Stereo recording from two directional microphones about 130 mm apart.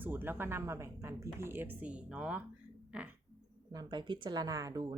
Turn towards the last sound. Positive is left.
turn(degrees=-25)  # may be behind; listen again after turning